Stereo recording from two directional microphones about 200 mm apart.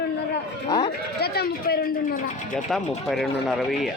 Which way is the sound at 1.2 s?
50° left (ahead or behind).